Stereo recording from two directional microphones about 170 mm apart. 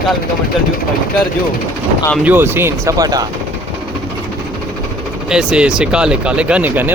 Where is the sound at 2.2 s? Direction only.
10° right (ahead or behind).